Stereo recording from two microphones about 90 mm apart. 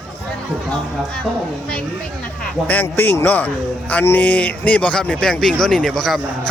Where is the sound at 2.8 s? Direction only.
25° left (ahead or behind).